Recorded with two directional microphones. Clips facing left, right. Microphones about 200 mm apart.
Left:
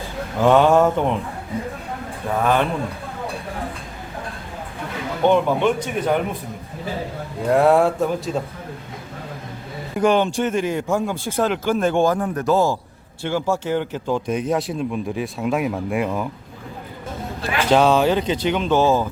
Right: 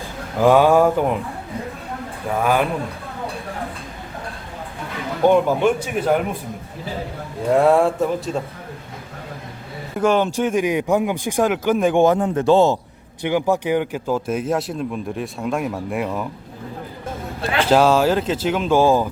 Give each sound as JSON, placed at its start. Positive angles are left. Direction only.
{"t": 0.4, "sound": "speech", "side_deg": -10}
{"t": 2.3, "sound": "speech", "side_deg": -10}
{"t": 5.2, "sound": "speech", "side_deg": -5}
{"t": 7.4, "sound": "speech", "side_deg": 0}
{"t": 10.0, "sound": "speech", "side_deg": -5}
{"t": 17.7, "sound": "speech", "side_deg": -5}